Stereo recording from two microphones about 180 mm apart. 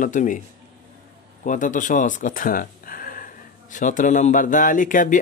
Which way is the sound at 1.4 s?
45° left (ahead or behind).